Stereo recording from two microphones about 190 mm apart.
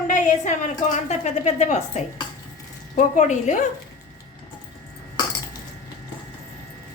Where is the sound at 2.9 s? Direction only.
40° left (ahead or behind).